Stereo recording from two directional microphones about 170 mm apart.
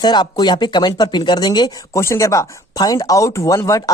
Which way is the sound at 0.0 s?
25° left (ahead or behind).